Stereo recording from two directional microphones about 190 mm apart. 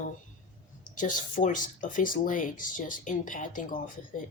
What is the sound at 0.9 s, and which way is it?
A woman's voice, 45° left (ahead or behind).